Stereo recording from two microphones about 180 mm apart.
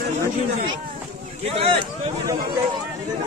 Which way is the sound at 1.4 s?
35° right (ahead or behind).